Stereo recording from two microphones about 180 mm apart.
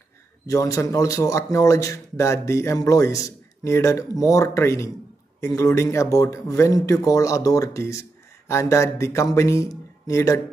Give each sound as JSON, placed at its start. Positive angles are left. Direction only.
{"t": 0.5, "sound": "a man's voice", "side_deg": 15}